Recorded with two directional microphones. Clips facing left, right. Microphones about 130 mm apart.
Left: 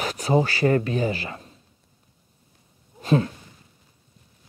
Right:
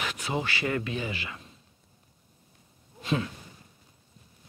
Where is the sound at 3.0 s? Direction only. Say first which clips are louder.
Left 8 dB; 40° left (ahead or behind).